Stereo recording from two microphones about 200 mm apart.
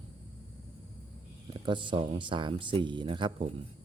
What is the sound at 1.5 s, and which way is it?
Speech, 25° right (ahead or behind).